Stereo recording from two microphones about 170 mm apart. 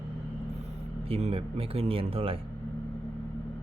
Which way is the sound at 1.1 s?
35° right (ahead or behind).